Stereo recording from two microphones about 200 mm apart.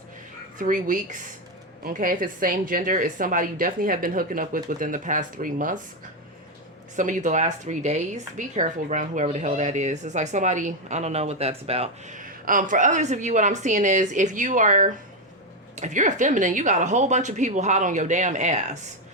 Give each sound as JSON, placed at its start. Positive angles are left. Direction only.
{"t": 0.6, "sound": "a woman's voice", "side_deg": -40}
{"t": 6.9, "sound": "speech", "side_deg": -40}